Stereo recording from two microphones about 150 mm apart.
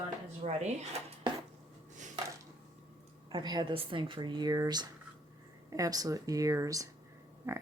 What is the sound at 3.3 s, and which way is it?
Speech, 30° right (ahead or behind).